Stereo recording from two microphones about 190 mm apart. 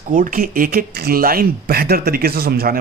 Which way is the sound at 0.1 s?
45° right (ahead or behind).